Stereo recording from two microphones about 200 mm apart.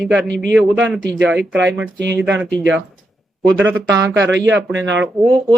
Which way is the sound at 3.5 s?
70° right (ahead or behind).